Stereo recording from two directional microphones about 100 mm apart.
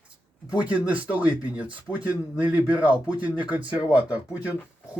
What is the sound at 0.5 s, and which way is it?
Speech, 10° right (ahead or behind).